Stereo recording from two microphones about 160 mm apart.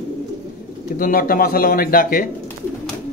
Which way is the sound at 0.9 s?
60° left (ahead or behind).